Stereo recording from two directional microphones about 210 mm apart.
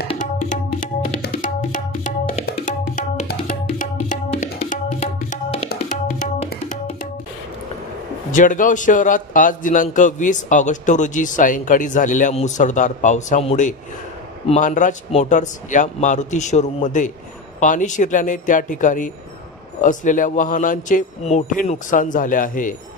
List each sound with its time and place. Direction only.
1.2 s tabla: 40° left (ahead or behind)
5.7 s music: 35° left (ahead or behind)
8.3 s a man's voice: 40° left (ahead or behind)